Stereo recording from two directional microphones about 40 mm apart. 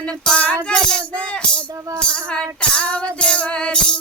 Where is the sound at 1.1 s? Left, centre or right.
Left.